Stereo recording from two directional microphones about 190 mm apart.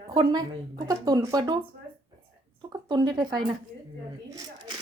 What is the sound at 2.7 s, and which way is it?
Speech, 20° right (ahead or behind).